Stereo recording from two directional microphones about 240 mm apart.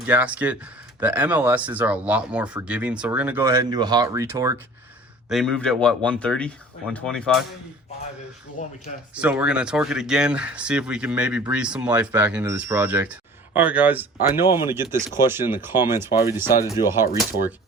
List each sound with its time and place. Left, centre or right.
0.1 s speech: centre
5.3 s speech: centre
8.6 s speech: left
9.1 s speech: centre